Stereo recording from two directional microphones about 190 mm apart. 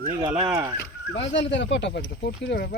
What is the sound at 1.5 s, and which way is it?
Speech, 70° left (ahead or behind).